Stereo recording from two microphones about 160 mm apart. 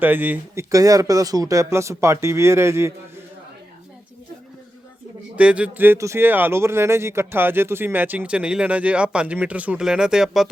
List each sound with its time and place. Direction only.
0.0 s speech: 10° right (ahead or behind)
5.4 s speech: 10° right (ahead or behind)